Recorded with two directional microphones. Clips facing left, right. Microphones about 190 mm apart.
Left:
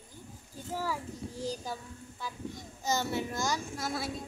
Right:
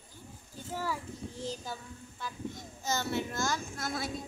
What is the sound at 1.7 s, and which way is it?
Music, 10° left (ahead or behind).